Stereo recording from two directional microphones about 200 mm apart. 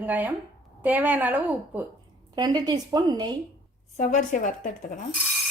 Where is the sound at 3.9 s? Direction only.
40° left (ahead or behind).